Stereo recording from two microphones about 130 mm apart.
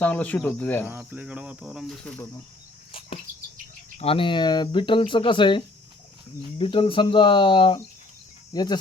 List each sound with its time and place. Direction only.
0.0 s speech: 10° left (ahead or behind)
0.9 s cricket: 15° right (ahead or behind)
3.9 s speech: 50° left (ahead or behind); by 8.8 s 30° left (ahead or behind)